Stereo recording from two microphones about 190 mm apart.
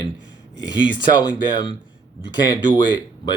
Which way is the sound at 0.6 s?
20° left (ahead or behind).